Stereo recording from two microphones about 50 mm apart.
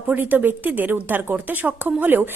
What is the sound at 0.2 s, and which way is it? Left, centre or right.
A woman's voice, right.